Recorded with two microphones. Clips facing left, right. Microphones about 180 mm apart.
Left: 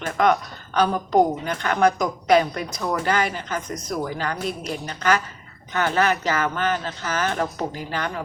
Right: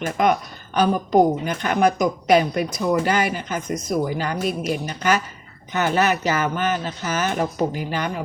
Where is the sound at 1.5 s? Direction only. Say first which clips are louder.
Right 1 dB; 20° right (ahead or behind).